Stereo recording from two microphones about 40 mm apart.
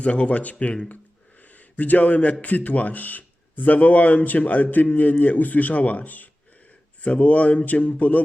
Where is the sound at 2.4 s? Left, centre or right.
Left.